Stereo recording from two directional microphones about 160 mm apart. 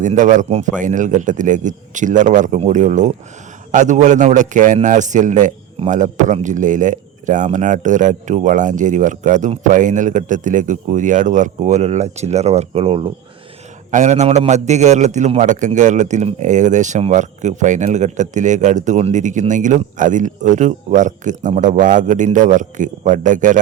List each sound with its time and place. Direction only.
0.0 s a man's voice: 50° right (ahead or behind)